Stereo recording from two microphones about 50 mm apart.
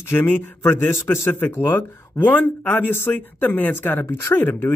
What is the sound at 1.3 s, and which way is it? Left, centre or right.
Speech, left.